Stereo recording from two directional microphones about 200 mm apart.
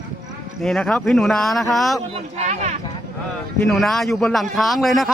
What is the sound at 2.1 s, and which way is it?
Speech, 35° right (ahead or behind).